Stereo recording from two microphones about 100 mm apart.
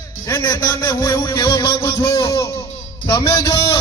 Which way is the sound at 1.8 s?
30° left (ahead or behind).